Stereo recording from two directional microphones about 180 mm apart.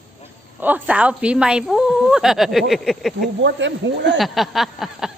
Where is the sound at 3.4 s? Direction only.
80° right.